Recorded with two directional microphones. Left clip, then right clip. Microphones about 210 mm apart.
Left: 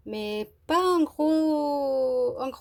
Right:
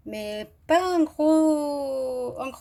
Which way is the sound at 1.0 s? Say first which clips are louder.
Right 4 dB; 25° left (ahead or behind).